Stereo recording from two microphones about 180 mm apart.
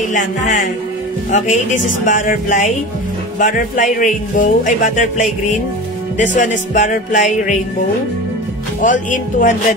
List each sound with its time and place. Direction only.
0.1 s speech: 45° left (ahead or behind)
6.3 s speech: 45° left (ahead or behind)
8.8 s speech: 45° left (ahead or behind)